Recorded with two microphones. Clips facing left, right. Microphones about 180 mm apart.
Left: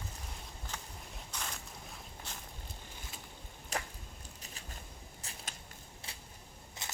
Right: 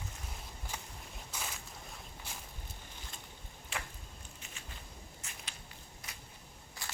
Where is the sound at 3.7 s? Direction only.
40° left (ahead or behind).